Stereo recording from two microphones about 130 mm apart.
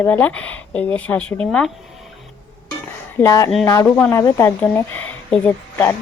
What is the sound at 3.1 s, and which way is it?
A woman's voice, 25° left (ahead or behind).